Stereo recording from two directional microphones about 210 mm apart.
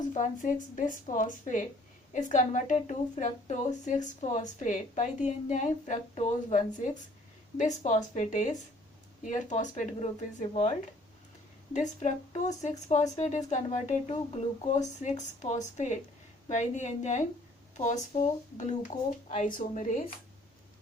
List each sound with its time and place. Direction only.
0.1 s a woman's voice: 35° left (ahead or behind)